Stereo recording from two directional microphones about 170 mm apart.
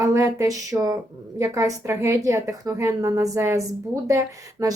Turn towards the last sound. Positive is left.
turn(degrees=-20)  # may be behind; listen again after turning